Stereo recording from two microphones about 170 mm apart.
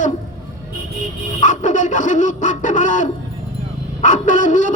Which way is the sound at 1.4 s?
50° left (ahead or behind).